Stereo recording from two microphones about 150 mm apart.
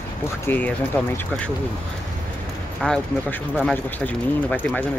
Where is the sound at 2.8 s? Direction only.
5° left (ahead or behind).